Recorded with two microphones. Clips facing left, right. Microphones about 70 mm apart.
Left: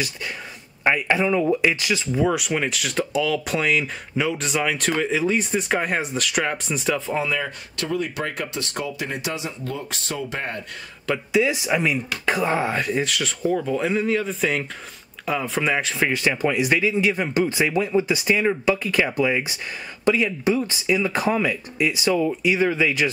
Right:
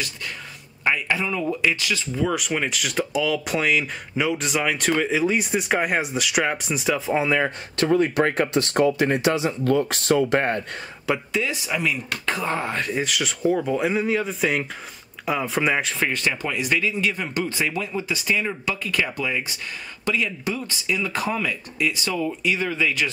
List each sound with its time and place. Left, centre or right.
0.8 s speech: left
2.3 s speech: centre
7.2 s speech: right
9.7 s speech: right
11.1 s speech: centre
11.5 s speech: left; by 15.9 s centre
15.9 s speech: centre